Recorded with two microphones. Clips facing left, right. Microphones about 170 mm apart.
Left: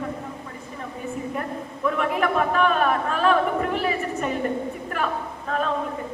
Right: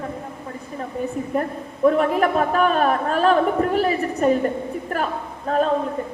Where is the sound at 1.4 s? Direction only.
40° right (ahead or behind).